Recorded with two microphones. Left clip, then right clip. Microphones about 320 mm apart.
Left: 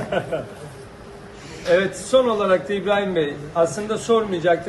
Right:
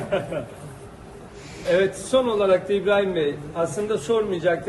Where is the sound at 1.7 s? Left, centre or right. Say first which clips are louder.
Left 3 dB; left.